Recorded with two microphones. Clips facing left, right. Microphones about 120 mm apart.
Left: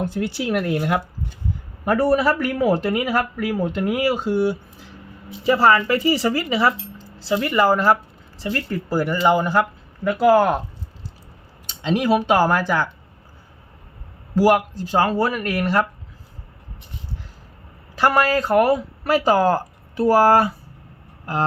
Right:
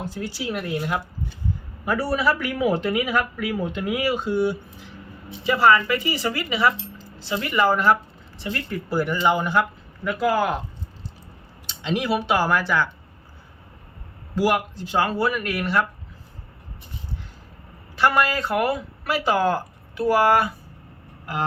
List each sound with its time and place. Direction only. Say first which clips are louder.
0.0 s speech: left 6 dB; 60° left (ahead or behind)
1.8 s speech: left 5 dB; 50° left (ahead or behind)
11.9 s speech: left 4 dB; 45° left (ahead or behind)
14.3 s speech: left 5 dB; 40° left (ahead or behind)
18.0 s speech: left 3 dB; 40° left (ahead or behind)